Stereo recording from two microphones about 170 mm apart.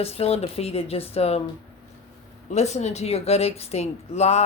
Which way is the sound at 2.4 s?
40° left (ahead or behind).